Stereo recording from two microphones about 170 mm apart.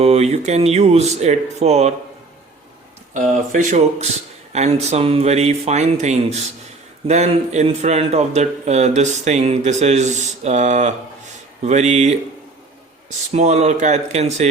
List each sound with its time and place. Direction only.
0.0 s a man's voice: 40° right (ahead or behind)
3.2 s a man's voice: 45° right (ahead or behind)
13.3 s a man's voice: 40° right (ahead or behind)